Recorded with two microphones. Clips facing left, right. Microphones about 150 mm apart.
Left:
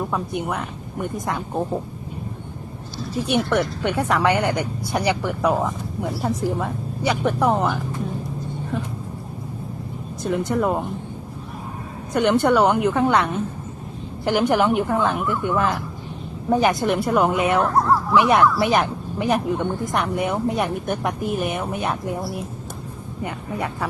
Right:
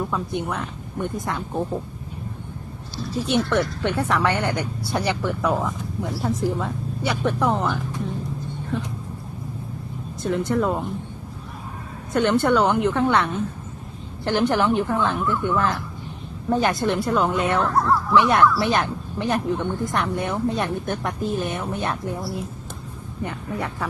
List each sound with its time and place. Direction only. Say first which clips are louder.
0.1 s speech: left 1 dB; 15° left (ahead or behind)
3.2 s speech: left 1 dB; 15° left (ahead or behind)
10.2 s speech: left 1 dB; 15° left (ahead or behind)
12.1 s a woman's voice: left 1 dB; 15° left (ahead or behind)